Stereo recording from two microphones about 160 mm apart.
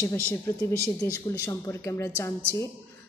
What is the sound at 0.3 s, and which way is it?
A woman's voice, 15° left (ahead or behind).